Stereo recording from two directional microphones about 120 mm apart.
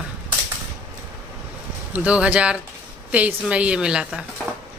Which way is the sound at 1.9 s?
10° right (ahead or behind).